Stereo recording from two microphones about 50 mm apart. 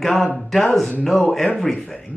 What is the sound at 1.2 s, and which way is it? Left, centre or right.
Mantra, centre.